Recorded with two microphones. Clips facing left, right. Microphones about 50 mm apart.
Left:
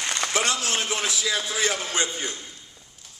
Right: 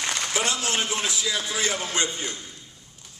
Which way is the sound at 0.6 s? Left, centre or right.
Right.